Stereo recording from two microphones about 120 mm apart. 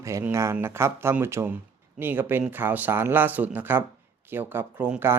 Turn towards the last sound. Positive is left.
turn(degrees=-15)  # may be behind; listen again after turning